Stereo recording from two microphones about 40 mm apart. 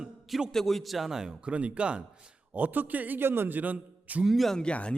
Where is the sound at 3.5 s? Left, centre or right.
Right.